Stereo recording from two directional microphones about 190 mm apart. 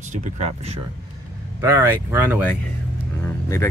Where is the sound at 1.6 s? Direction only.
15° right (ahead or behind).